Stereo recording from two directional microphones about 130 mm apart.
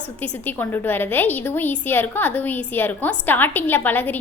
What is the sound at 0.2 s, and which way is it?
A woman's voice, 15° left (ahead or behind).